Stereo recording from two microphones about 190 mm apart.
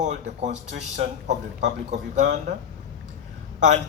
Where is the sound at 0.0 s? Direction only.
40° right (ahead or behind).